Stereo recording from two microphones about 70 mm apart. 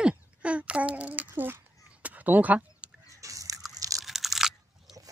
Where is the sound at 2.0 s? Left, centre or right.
Right.